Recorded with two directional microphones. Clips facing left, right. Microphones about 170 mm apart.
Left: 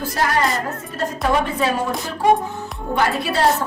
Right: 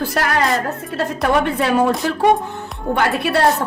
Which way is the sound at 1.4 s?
65° right (ahead or behind).